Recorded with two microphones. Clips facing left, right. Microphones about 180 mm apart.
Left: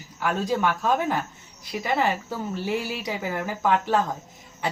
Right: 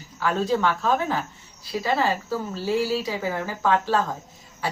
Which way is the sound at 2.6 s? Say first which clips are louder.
Right 7 dB; 20° left (ahead or behind).